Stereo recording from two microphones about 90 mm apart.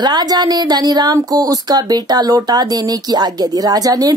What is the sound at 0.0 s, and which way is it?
Speech, 50° right (ahead or behind).